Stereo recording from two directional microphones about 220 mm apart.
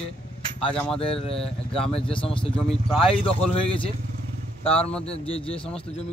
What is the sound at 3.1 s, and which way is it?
Speech, 25° left (ahead or behind).